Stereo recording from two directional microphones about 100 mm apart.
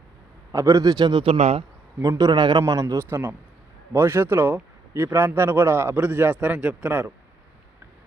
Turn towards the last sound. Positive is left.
turn(degrees=-15)  # may be behind; listen again after turning